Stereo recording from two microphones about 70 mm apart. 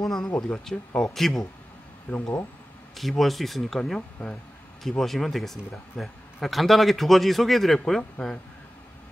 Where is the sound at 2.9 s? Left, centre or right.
Centre.